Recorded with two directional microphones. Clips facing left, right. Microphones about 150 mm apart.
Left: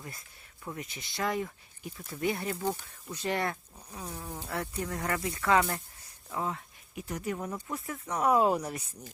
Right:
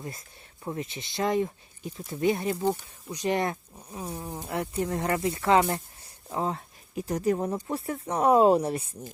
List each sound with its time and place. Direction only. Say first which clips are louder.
0.6 s speech: right 6 dB; 25° right (ahead or behind)